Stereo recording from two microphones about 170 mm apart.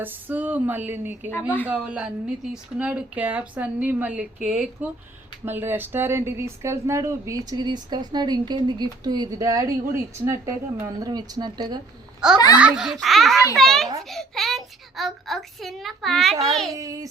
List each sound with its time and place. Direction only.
0.0 s speech: 10° right (ahead or behind)
12.2 s a child's voice: 5° right (ahead or behind)
16.7 s speech: 20° right (ahead or behind)